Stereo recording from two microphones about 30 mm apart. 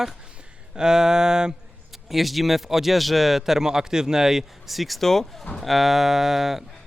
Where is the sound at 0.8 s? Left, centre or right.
Right.